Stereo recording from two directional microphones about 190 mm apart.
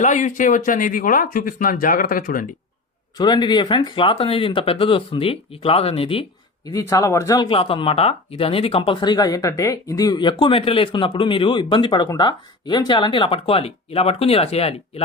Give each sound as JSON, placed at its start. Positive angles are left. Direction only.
{"t": 0.0, "sound": "speech", "side_deg": 40}
{"t": 3.2, "sound": "speech", "side_deg": 20}
{"t": 6.7, "sound": "speech", "side_deg": 15}